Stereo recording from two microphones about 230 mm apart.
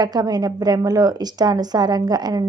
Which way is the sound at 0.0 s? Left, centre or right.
Centre.